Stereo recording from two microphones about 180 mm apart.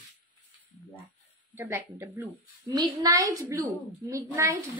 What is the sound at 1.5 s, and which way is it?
A woman's voice, 15° right (ahead or behind).